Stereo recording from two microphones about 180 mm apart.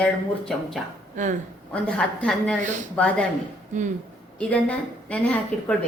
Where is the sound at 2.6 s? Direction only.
45° right (ahead or behind).